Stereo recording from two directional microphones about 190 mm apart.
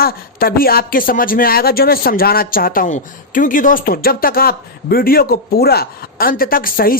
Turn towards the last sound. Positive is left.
turn(degrees=50)  # may be behind; listen again after turning